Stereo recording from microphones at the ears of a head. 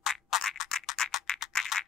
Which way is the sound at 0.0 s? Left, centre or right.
Left.